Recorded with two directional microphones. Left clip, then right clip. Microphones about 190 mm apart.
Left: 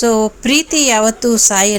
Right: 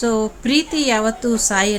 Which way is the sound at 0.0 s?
30° left (ahead or behind).